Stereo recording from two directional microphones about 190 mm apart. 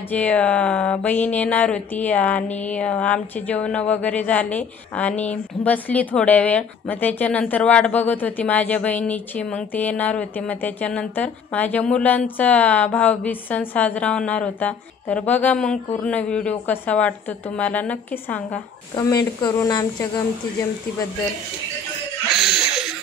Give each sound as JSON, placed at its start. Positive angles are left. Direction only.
{"t": 0.1, "sound": "speech", "side_deg": 5}
{"t": 19.4, "sound": "a woman's voice", "side_deg": 20}
{"t": 22.3, "sound": "a sound", "side_deg": 0}